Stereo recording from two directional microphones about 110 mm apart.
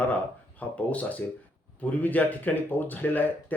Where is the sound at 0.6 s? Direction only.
15° left (ahead or behind).